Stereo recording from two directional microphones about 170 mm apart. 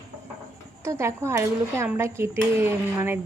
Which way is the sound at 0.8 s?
15° right (ahead or behind).